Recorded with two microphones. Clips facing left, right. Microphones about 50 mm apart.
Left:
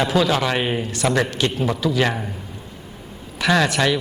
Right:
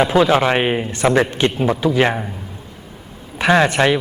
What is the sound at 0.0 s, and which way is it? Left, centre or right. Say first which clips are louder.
A man's voice: right 5 dB; right.